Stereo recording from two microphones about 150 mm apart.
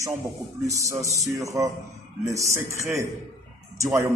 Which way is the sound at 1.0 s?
20° right (ahead or behind).